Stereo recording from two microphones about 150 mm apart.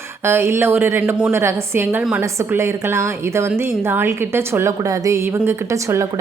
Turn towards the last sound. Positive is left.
turn(degrees=-20)  # may be behind; listen again after turning